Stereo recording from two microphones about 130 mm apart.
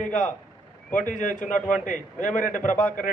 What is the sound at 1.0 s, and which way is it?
A man's voice, 85° left.